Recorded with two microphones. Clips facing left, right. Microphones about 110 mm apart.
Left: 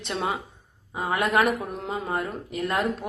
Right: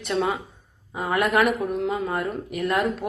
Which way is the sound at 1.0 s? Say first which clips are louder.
Right 2 dB; 25° left (ahead or behind).